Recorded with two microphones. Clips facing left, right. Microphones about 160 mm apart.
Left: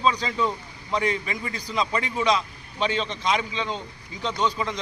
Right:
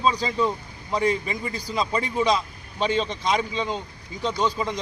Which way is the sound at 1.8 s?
35° right (ahead or behind).